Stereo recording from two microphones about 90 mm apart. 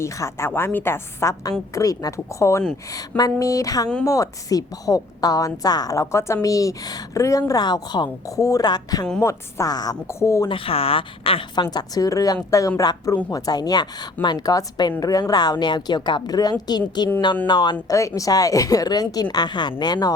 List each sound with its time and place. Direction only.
0.0 s a woman's voice: 35° left (ahead or behind)
2.9 s a woman's voice: 45° left (ahead or behind)
10.1 s a woman's voice: 35° left (ahead or behind)
10.5 s speech: 90° left
11.5 s a woman's voice: 50° left (ahead or behind)
17.8 s speech: 35° left (ahead or behind)